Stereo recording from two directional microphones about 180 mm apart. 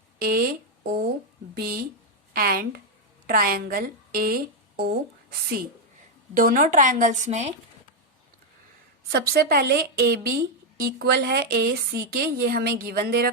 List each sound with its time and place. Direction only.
0.2 s a woman's voice: 55° right (ahead or behind)
6.3 s a woman's voice: 50° right (ahead or behind)
9.1 s a woman's voice: 60° right (ahead or behind)